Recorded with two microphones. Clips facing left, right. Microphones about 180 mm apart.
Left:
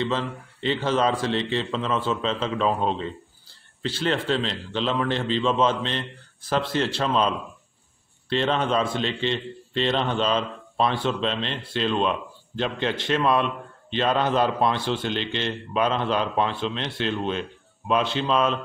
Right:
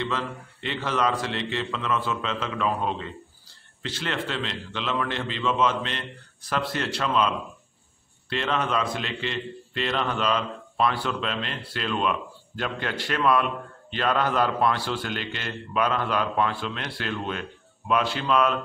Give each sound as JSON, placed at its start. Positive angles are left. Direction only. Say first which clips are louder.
{"t": 0.1, "sound": "a man's voice", "louder": "left 3 dB", "side_deg": 30}
{"t": 8.3, "sound": "a man's voice", "louder": "left 4 dB", "side_deg": 30}